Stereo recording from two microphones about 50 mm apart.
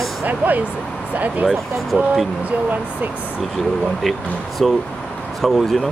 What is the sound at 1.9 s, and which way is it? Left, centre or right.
Speech, centre.